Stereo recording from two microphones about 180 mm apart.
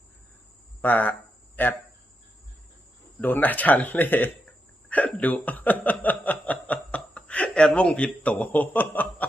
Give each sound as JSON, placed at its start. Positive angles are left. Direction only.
{"t": 0.8, "sound": "speech", "side_deg": 10}
{"t": 3.2, "sound": "speech", "side_deg": 10}